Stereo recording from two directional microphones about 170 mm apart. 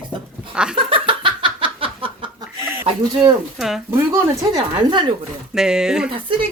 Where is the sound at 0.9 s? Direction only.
30° right (ahead or behind).